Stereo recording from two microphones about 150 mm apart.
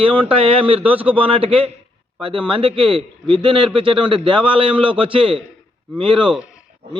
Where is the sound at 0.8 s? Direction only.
10° right (ahead or behind).